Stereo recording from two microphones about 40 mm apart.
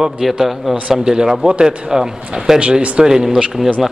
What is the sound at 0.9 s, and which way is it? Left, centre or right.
A man's voice, centre.